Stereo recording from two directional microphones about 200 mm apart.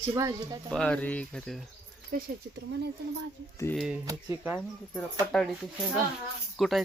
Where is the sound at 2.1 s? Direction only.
50° right (ahead or behind).